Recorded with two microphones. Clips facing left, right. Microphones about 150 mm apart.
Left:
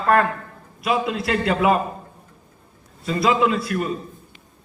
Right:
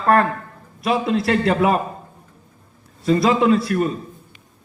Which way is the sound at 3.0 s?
35° right (ahead or behind).